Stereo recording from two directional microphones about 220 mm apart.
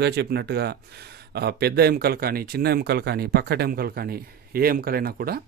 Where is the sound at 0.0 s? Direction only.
50° right (ahead or behind).